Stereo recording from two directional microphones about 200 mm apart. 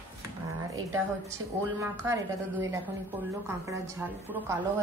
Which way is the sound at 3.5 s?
10° right (ahead or behind).